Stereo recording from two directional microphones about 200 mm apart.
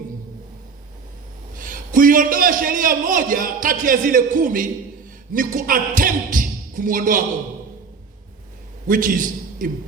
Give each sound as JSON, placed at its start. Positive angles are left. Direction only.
{"t": 1.5, "sound": "a man's voice", "side_deg": -40}
{"t": 8.9, "sound": "a man's voice", "side_deg": -45}